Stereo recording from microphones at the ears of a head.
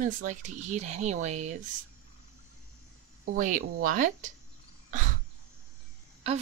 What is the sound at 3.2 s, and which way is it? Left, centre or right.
Speech, right.